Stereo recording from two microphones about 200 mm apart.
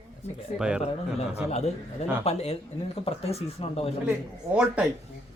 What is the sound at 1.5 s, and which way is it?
Speech, 35° left (ahead or behind).